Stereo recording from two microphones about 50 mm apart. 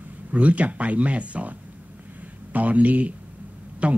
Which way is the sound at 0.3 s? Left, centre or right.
Right.